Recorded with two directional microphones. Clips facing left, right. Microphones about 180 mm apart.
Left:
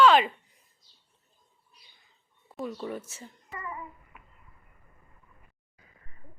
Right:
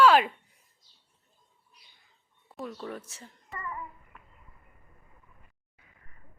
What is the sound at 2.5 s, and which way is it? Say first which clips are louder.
A child's voice: left 3 dB; centre (ahead or behind).